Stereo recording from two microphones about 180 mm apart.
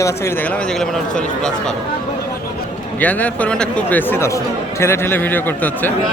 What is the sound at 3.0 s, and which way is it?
A man's voice, 10° left (ahead or behind).